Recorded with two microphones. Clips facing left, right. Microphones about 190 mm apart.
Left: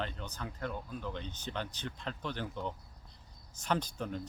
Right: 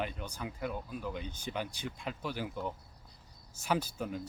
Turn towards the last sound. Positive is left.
turn(degrees=-5)  # may be behind; listen again after turning